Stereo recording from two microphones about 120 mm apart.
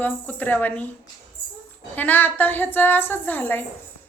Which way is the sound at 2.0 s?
15° left (ahead or behind).